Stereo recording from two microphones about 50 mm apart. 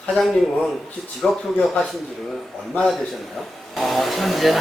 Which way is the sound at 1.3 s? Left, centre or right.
Centre.